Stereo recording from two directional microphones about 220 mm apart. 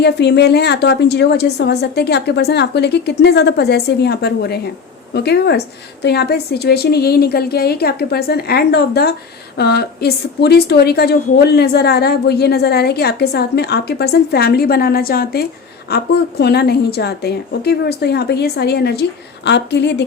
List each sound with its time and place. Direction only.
0.0 s a woman's voice: 50° left (ahead or behind)